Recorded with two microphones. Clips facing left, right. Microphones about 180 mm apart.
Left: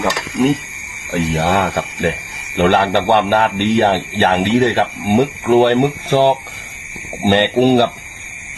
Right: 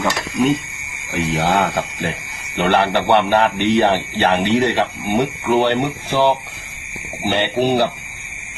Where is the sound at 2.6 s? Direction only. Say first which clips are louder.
Left 3 dB; 55° left (ahead or behind).